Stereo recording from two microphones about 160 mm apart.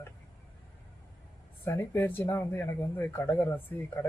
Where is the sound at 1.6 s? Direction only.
15° left (ahead or behind).